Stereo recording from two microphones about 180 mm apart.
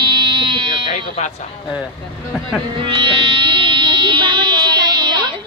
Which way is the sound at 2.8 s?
30° right (ahead or behind).